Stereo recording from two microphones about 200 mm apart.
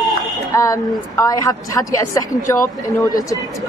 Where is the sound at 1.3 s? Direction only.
15° left (ahead or behind).